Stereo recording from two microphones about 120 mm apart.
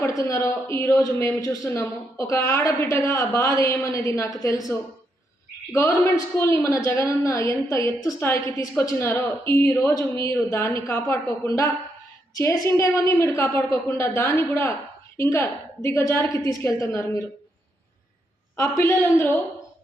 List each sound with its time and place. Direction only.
0.0 s a woman's voice: 25° left (ahead or behind)
18.5 s a woman's voice: 25° left (ahead or behind)